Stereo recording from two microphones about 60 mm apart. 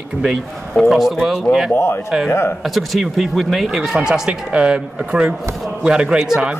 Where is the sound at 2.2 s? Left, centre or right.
Left.